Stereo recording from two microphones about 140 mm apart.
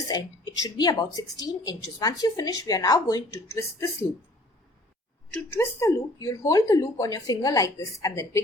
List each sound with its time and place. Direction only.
0.1 s a woman's voice: 30° left (ahead or behind)
5.3 s a woman's voice: 15° left (ahead or behind)